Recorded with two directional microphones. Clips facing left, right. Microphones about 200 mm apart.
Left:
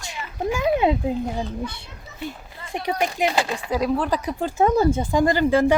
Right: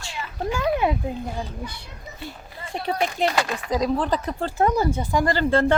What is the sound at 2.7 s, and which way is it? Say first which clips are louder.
Speech: left 1 dB; 15° left (ahead or behind).